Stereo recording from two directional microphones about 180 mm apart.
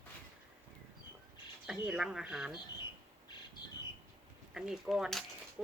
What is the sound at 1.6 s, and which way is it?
Speech, 5° right (ahead or behind).